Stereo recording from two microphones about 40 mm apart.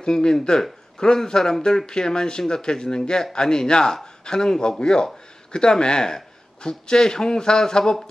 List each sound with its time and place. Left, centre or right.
0.0 s speech: centre